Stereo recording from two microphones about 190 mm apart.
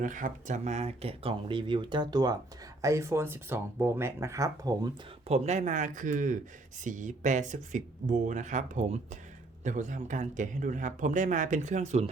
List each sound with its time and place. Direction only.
0.0 s speech: 40° right (ahead or behind); by 4.9 s 20° right (ahead or behind)
5.3 s speech: 35° right (ahead or behind)